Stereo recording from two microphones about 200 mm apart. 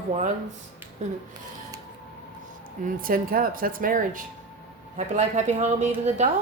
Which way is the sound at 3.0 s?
45° right (ahead or behind).